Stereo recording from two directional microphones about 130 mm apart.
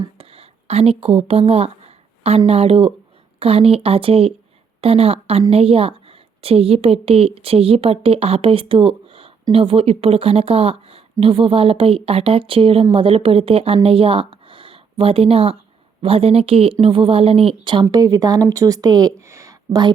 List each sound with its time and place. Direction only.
0.2 s a woman's voice: 50° right (ahead or behind); by 19.9 s 25° right (ahead or behind)